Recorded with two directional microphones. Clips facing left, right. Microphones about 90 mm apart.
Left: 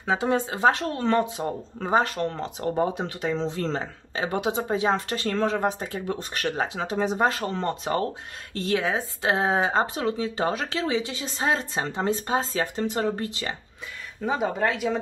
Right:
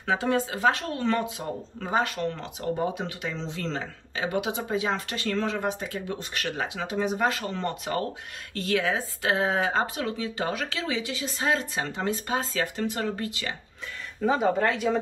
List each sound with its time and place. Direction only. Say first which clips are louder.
0.0 s speech: left 1 dB; 20° left (ahead or behind)
14.2 s speech: right 2 dB; 5° left (ahead or behind)